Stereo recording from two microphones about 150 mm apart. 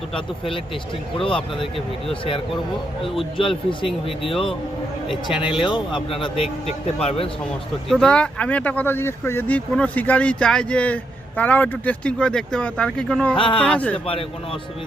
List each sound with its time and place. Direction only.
0.1 s speech: 35° left (ahead or behind)
3.7 s speech: 35° left (ahead or behind)
7.9 s speech: 5° left (ahead or behind)
13.3 s speech: 35° left (ahead or behind)
13.7 s speech: 10° left (ahead or behind)